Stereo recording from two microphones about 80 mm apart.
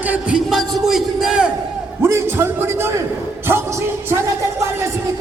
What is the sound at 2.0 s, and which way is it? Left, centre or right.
Speech, right.